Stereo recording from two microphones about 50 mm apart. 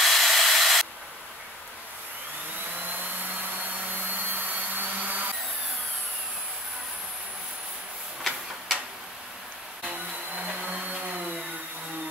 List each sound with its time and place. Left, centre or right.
0.0 s a sound: centre
3.9 s vacuum cleaner: right
8.2 s tick-tock: centre
9.8 s music: right